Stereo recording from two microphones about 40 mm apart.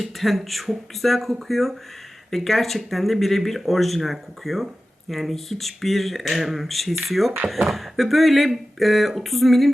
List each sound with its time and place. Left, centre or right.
0.0 s speech: centre